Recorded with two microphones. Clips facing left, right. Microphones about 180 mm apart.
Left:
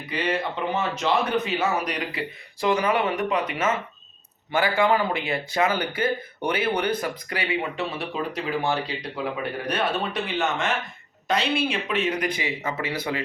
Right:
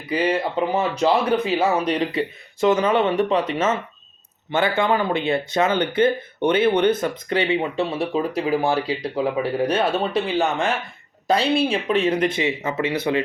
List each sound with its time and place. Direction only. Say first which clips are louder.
0.1 s speech: right 6 dB; 35° right (ahead or behind)